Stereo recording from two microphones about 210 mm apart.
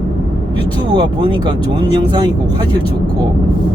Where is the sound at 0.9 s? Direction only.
20° right (ahead or behind).